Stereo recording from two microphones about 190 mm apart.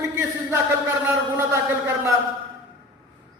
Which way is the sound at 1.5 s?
15° right (ahead or behind).